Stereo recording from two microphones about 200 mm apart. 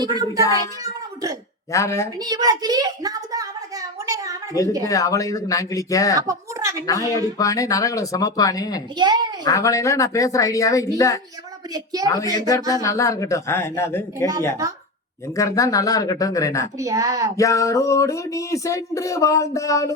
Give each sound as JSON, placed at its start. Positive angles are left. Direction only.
{"t": 0.0, "sound": "a child's voice", "side_deg": -20}
{"t": 1.7, "sound": "speech", "side_deg": 15}
{"t": 2.1, "sound": "a sound", "side_deg": -20}
{"t": 4.9, "sound": "speech", "side_deg": 15}
{"t": 6.1, "sound": "a woman's voice", "side_deg": -15}
{"t": 7.2, "sound": "speech", "side_deg": 15}
{"t": 9.0, "sound": "a child's voice", "side_deg": -20}
{"t": 9.4, "sound": "speech", "side_deg": 15}
{"t": 11.7, "sound": "speech", "side_deg": -20}
{"t": 12.0, "sound": "speech", "side_deg": 20}
{"t": 15.4, "sound": "speech", "side_deg": 15}
{"t": 16.7, "sound": "speech", "side_deg": -15}
{"t": 17.3, "sound": "speech", "side_deg": 15}